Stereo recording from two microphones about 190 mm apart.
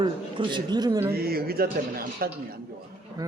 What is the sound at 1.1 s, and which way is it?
Speech, 55° right (ahead or behind).